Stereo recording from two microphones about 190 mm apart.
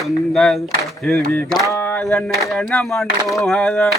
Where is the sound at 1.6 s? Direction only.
15° left (ahead or behind).